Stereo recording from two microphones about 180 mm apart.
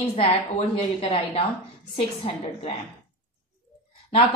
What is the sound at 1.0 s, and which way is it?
A woman's voice, 30° left (ahead or behind).